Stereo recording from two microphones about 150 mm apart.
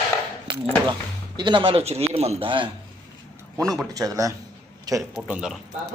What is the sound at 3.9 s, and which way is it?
Speech, 25° right (ahead or behind).